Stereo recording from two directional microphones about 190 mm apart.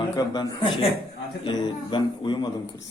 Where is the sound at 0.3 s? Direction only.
25° left (ahead or behind).